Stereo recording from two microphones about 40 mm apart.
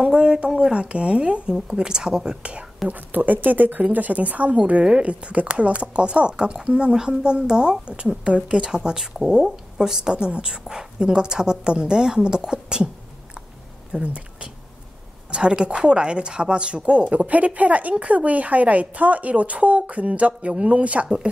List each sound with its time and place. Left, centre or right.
0.0 s a woman's voice: right
2.9 s a woman's voice: right; by 10.1 s centre
10.1 s a woman's voice: right
14.0 s speech: right